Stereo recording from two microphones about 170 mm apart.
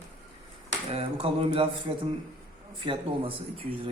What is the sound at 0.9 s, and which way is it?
A man's voice, 30° right (ahead or behind).